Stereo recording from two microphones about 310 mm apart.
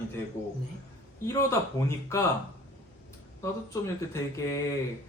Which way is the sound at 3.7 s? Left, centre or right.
Centre.